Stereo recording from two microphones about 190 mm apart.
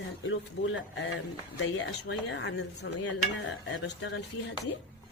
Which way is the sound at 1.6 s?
70° left (ahead or behind).